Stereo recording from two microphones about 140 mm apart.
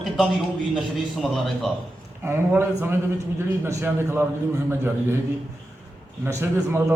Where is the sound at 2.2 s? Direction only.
20° right (ahead or behind).